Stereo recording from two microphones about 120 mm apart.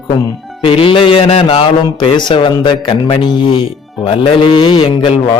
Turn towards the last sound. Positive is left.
turn(degrees=45)  # may be behind; listen again after turning